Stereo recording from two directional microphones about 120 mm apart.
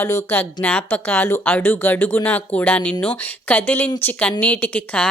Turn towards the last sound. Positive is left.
turn(degrees=10)  # may be behind; listen again after turning